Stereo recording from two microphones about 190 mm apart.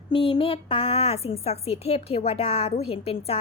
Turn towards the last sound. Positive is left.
turn(degrees=30)  # may be behind; listen again after turning